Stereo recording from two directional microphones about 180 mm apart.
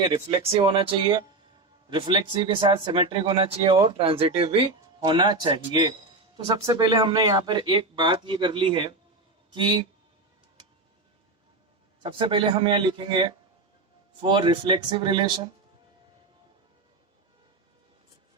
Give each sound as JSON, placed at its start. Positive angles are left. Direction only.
{"t": 0.0, "sound": "speech", "side_deg": -30}
{"t": 12.0, "sound": "speech", "side_deg": -25}